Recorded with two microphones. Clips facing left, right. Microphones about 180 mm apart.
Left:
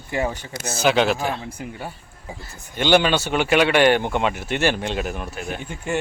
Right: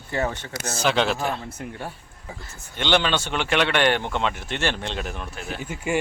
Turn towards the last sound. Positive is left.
turn(degrees=-10)  # may be behind; listen again after turning